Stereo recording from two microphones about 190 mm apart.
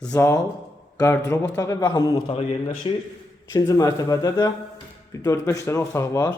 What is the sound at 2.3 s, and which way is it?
Speech, 30° left (ahead or behind).